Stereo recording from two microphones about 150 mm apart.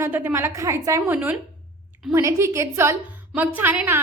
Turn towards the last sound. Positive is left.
turn(degrees=-15)  # may be behind; listen again after turning